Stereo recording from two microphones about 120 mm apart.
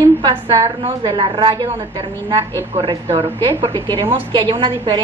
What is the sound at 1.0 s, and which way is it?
A woman's voice, 40° right (ahead or behind).